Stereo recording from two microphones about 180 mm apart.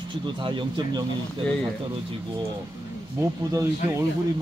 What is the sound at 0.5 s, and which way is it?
Speech, 25° right (ahead or behind).